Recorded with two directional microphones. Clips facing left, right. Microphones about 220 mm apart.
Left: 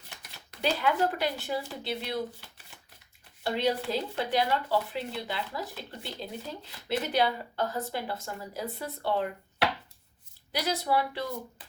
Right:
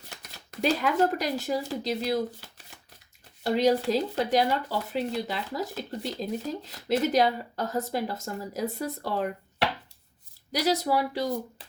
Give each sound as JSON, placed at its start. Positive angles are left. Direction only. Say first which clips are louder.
{"t": 0.2, "sound": "speech", "louder": "right 4 dB", "side_deg": -40}
{"t": 10.5, "sound": "speech", "louder": "right 4 dB", "side_deg": -40}